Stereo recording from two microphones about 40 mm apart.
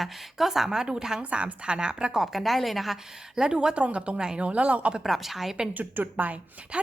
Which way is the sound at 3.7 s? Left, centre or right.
Right.